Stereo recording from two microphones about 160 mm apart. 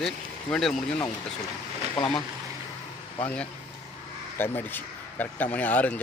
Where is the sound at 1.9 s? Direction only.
30° left (ahead or behind).